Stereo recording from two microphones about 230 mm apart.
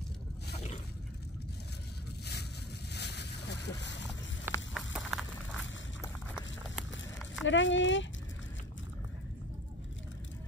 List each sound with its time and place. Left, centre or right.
2.9 s a sound: left
4.5 s run: centre
7.4 s speech: left